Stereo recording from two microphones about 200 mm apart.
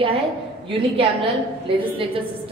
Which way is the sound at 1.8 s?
25° right (ahead or behind).